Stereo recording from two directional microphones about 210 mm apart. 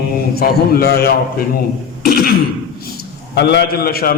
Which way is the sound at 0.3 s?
45° left (ahead or behind).